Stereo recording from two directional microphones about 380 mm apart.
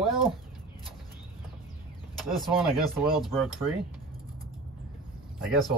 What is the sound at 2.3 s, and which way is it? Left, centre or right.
Speech, centre.